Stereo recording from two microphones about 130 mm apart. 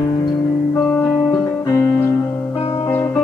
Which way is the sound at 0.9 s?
5° left (ahead or behind).